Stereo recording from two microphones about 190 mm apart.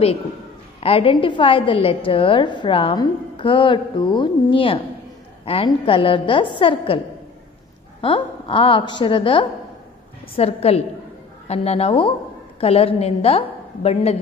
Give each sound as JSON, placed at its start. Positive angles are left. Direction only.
{"t": 0.8, "sound": "a woman's voice", "side_deg": 30}
{"t": 8.0, "sound": "a woman's voice", "side_deg": 25}